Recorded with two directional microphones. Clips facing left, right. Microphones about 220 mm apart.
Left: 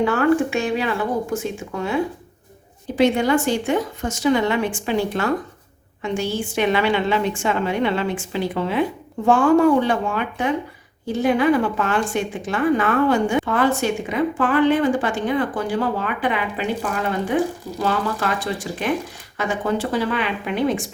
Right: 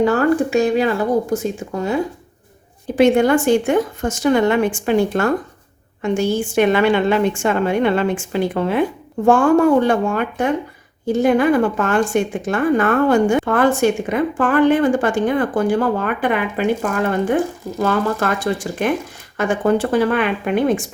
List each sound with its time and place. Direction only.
0.0 s speech: 40° right (ahead or behind)
2.9 s a woman's voice: 50° right (ahead or behind)